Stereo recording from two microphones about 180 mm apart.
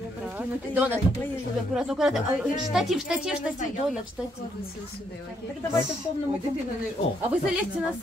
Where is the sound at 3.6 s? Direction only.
45° left (ahead or behind).